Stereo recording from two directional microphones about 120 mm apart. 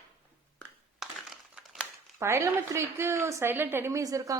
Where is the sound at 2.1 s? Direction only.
20° right (ahead or behind).